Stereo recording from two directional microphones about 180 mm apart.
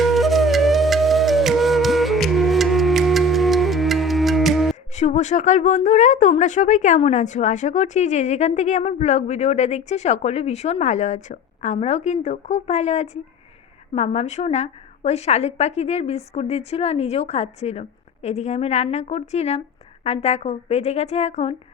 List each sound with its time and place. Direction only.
0.0 s flute: centre (ahead or behind)
4.9 s a woman's voice: 40° left (ahead or behind)